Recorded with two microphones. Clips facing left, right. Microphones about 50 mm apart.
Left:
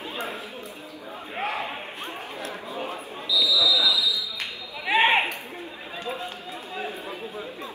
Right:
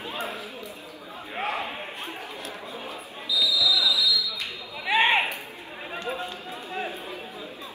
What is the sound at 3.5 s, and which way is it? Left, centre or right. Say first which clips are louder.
Basketball bounce: left 2 dB; left.